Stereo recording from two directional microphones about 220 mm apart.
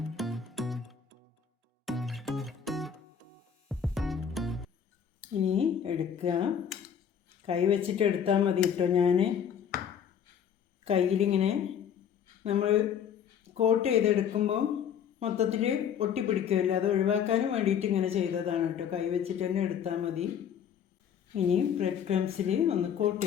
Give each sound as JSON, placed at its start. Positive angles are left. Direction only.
{"t": 0.2, "sound": "music", "side_deg": 0}
{"t": 5.3, "sound": "a woman's voice", "side_deg": -25}
{"t": 10.8, "sound": "a woman's voice", "side_deg": -30}
{"t": 21.3, "sound": "a woman's voice", "side_deg": -30}